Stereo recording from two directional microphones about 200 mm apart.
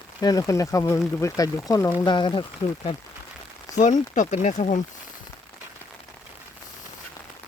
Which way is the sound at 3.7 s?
35° left (ahead or behind).